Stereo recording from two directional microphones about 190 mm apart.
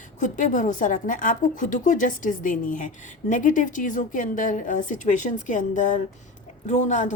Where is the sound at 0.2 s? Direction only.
40° left (ahead or behind).